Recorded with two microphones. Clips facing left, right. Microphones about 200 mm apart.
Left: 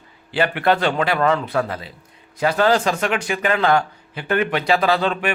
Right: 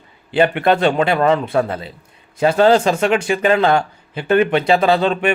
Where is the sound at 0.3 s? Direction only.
20° right (ahead or behind).